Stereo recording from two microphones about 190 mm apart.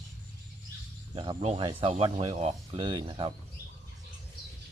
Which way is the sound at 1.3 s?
35° right (ahead or behind).